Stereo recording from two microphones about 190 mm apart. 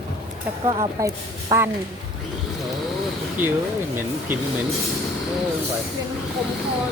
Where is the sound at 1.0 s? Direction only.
15° right (ahead or behind).